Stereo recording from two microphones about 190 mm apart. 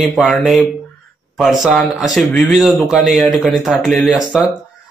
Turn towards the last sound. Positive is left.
turn(degrees=0)  # may be behind; listen again after turning